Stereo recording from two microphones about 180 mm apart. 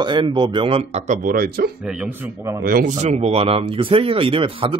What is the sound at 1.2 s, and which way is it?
Speech, 55° right (ahead or behind).